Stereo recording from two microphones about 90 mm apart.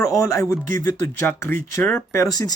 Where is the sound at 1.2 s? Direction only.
25° left (ahead or behind); by 2.5 s 40° left (ahead or behind).